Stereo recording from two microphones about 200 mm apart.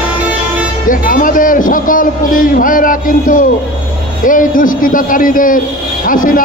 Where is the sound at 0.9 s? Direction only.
40° left (ahead or behind).